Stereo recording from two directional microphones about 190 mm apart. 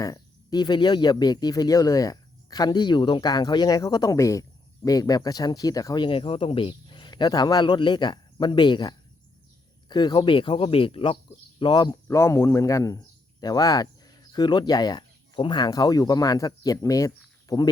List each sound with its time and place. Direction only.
0.0 s speech: 20° left (ahead or behind)